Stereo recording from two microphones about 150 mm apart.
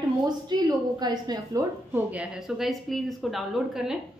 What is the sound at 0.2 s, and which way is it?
Speech, 25° right (ahead or behind).